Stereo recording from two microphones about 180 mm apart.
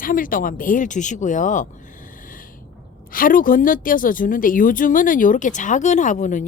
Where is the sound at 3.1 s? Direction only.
50° left (ahead or behind).